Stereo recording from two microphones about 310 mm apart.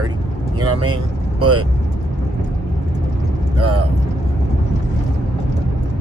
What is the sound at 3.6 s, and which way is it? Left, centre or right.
Speech, right.